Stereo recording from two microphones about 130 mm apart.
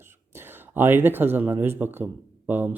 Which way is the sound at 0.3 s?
15° right (ahead or behind).